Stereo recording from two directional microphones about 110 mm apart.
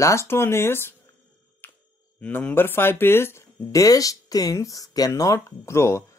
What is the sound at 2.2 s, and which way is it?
Speech, 15° left (ahead or behind).